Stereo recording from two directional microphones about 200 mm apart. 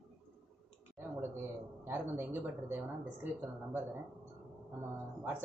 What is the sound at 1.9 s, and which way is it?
Speech, 10° right (ahead or behind).